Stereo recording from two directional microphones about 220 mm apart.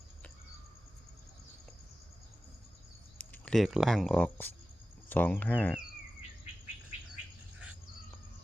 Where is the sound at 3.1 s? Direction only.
5° left (ahead or behind).